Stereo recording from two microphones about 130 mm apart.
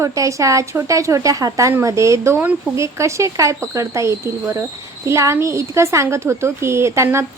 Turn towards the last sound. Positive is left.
turn(degrees=-20)  # may be behind; listen again after turning